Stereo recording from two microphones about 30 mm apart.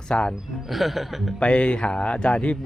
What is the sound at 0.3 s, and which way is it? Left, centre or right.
Speech, centre.